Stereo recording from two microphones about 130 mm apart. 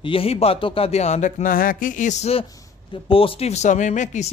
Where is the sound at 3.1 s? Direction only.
45° left (ahead or behind); by 4.3 s 70° left (ahead or behind).